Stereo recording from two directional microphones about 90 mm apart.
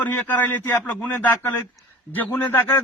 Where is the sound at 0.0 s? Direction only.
20° left (ahead or behind).